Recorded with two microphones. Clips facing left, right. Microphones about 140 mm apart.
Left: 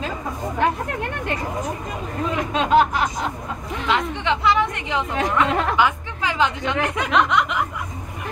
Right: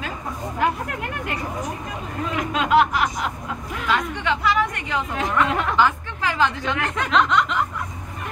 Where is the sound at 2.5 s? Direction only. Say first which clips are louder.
Left 1 dB; 30° left (ahead or behind); by 7.6 s 10° left (ahead or behind).